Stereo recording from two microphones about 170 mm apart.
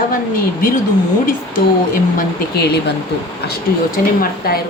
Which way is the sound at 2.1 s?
70° left (ahead or behind).